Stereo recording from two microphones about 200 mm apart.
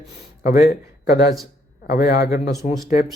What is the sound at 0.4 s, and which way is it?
Speech, 45° left (ahead or behind).